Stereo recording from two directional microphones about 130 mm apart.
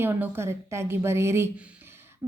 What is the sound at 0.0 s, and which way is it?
A woman's voice, 15° right (ahead or behind).